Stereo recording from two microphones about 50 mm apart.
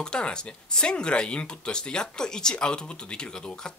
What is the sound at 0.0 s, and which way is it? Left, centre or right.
Speech, centre.